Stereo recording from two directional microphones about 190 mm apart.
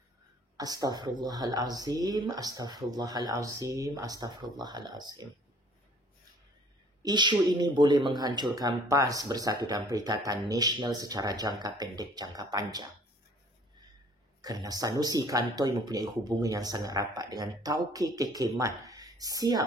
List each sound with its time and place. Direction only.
0.6 s speech: 20° right (ahead or behind)
7.0 s speech: 20° right (ahead or behind)
14.4 s speech: 20° right (ahead or behind)